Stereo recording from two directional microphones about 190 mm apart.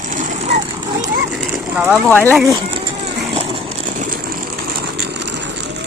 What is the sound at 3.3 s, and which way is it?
Vehicle, 35° right (ahead or behind).